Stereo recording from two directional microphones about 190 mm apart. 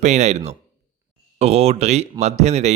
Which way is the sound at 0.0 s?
40° right (ahead or behind).